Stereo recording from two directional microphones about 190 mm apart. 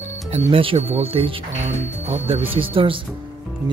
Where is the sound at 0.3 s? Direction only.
30° right (ahead or behind).